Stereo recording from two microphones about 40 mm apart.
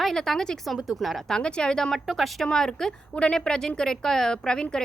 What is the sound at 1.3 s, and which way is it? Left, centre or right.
Speech, left.